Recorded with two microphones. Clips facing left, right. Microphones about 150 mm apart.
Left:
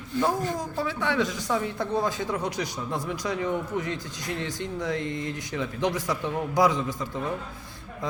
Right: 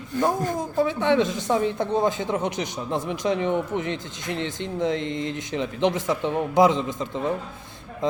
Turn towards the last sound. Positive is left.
turn(degrees=-20)  # may be behind; listen again after turning